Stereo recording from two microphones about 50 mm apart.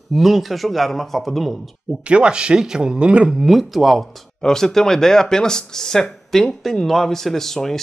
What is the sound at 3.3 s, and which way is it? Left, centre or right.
Speech, centre.